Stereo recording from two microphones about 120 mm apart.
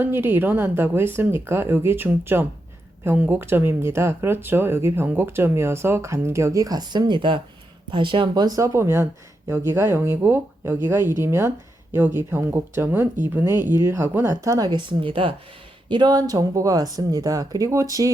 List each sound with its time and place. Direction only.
0.0 s speech: 20° right (ahead or behind); by 15.3 s 45° right (ahead or behind)
15.9 s speech: 35° right (ahead or behind)